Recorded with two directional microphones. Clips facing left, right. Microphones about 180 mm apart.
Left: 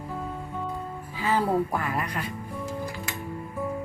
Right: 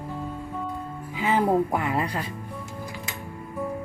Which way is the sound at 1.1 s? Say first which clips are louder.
Right 3 dB; 20° right (ahead or behind).